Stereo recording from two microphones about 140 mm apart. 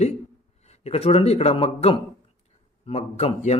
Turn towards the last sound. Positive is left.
turn(degrees=50)  # may be behind; listen again after turning